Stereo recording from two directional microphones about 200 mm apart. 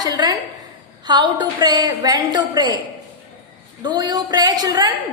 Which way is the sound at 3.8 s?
20° right (ahead or behind).